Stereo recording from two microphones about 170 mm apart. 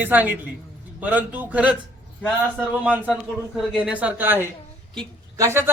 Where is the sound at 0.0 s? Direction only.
10° right (ahead or behind).